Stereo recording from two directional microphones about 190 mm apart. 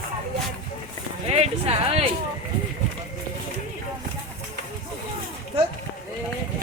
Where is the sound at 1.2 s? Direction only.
30° right (ahead or behind).